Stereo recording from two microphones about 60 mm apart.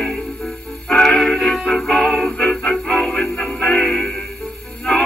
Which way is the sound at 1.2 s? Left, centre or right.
Centre.